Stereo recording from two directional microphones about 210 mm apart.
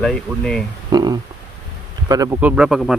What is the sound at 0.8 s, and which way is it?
Speech, 20° right (ahead or behind).